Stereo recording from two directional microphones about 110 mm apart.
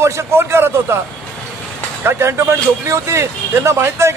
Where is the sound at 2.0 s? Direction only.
25° right (ahead or behind).